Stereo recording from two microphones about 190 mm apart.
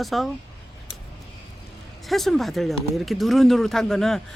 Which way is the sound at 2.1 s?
Centre (ahead or behind).